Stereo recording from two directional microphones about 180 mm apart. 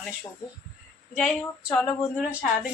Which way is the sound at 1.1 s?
Centre (ahead or behind).